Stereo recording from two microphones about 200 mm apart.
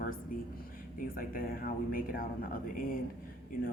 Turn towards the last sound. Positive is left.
turn(degrees=45)  # may be behind; listen again after turning